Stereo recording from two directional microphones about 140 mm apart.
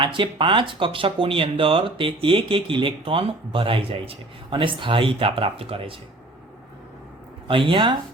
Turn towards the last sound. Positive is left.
turn(degrees=-35)  # may be behind; listen again after turning